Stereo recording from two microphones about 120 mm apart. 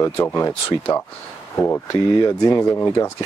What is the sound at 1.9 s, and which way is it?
Speech, 35° left (ahead or behind).